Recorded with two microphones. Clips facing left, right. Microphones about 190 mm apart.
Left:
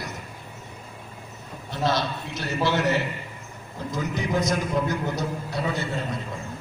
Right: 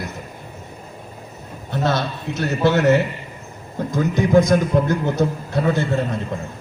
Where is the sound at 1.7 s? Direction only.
50° right (ahead or behind).